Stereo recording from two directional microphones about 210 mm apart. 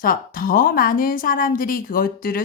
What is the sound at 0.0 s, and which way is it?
A woman's voice, 40° left (ahead or behind).